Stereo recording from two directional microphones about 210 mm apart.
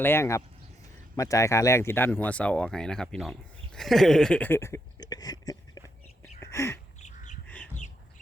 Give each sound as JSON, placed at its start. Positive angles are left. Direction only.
{"t": 0.0, "sound": "speech", "side_deg": 10}
{"t": 3.8, "sound": "a sound", "side_deg": 0}
{"t": 6.4, "sound": "bird", "side_deg": 15}
{"t": 7.0, "sound": "bird", "side_deg": 35}
{"t": 7.4, "sound": "bird", "side_deg": 5}